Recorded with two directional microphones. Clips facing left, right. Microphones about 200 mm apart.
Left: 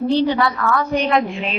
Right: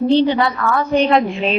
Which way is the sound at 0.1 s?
25° right (ahead or behind).